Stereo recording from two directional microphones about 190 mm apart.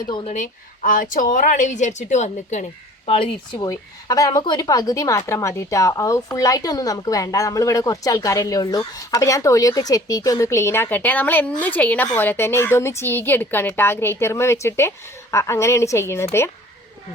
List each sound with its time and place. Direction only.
0.3 s speech: 40° left (ahead or behind)
3.1 s speech: 25° left (ahead or behind)